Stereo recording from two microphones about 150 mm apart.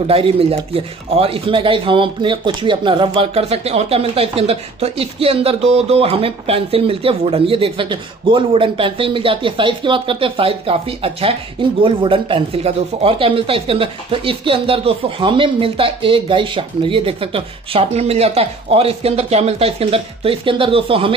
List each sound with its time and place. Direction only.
0.1 s a man's voice: 40° right (ahead or behind)